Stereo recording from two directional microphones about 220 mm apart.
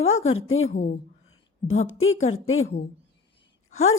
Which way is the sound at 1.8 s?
65° left (ahead or behind).